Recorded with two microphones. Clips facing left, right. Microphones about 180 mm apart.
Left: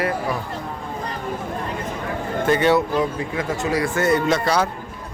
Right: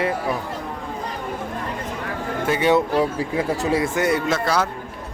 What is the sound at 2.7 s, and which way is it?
Speech, 30° right (ahead or behind).